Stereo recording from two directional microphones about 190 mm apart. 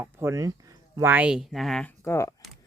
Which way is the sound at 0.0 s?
15° right (ahead or behind).